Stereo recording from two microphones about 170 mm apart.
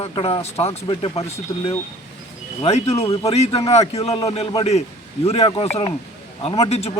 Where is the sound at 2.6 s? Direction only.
35° left (ahead or behind).